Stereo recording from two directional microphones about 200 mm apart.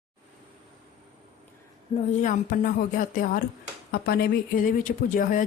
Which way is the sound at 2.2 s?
45° left (ahead or behind).